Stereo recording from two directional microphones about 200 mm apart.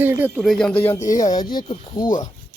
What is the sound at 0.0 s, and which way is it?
Speech, 10° right (ahead or behind).